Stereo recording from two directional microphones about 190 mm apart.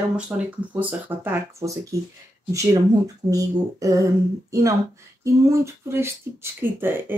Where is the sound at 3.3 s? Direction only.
15° right (ahead or behind).